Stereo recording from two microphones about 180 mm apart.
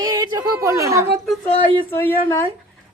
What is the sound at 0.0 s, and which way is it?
A woman's voice, 20° right (ahead or behind).